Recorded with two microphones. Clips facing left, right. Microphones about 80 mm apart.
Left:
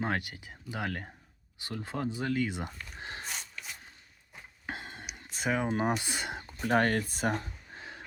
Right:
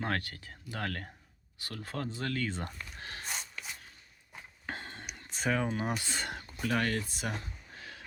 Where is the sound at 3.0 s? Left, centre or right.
Left.